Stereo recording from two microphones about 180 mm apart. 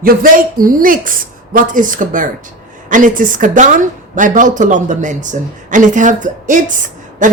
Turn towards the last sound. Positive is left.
turn(degrees=-45)  # may be behind; listen again after turning